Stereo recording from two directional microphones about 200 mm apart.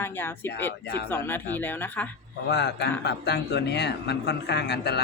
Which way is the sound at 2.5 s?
55° left (ahead or behind).